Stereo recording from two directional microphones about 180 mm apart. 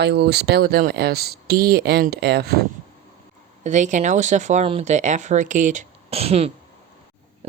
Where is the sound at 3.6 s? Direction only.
45° right (ahead or behind).